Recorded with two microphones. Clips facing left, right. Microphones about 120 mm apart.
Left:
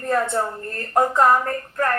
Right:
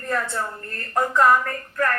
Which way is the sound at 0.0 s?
30° left (ahead or behind).